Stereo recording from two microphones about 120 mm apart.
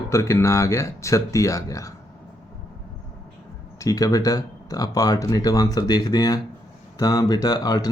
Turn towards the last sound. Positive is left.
turn(degrees=35)  # may be behind; listen again after turning